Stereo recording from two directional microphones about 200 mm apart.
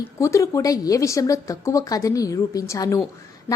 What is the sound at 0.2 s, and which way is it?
Speech, 15° left (ahead or behind).